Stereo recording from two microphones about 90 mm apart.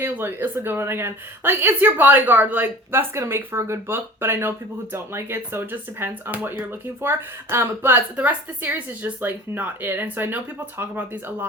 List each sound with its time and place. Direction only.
0.0 s a woman's voice: 25° right (ahead or behind)